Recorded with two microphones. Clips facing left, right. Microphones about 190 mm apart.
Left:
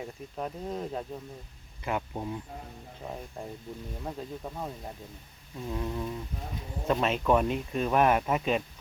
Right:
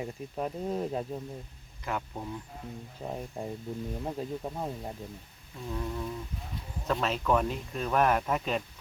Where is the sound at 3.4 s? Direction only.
10° right (ahead or behind).